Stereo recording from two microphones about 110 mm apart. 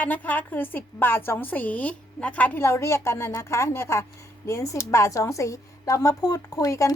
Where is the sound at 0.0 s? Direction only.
15° left (ahead or behind).